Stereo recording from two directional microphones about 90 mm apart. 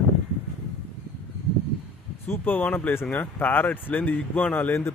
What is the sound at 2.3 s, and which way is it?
Speech, 20° left (ahead or behind).